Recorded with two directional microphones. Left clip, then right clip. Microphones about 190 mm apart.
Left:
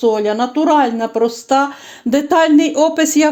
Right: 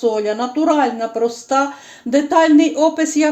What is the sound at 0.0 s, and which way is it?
Speech, 50° left (ahead or behind).